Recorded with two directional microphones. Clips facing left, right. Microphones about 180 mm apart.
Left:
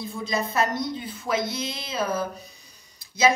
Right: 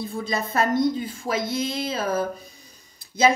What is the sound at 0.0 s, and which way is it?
A woman's voice, 55° right (ahead or behind).